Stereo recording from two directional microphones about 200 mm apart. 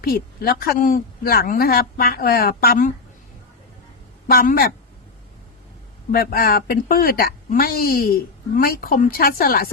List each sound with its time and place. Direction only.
0.0 s speech: 50° left (ahead or behind)
4.3 s speech: 50° left (ahead or behind)
6.1 s speech: 50° left (ahead or behind)